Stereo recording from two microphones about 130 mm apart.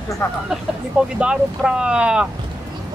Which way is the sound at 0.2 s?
20° left (ahead or behind).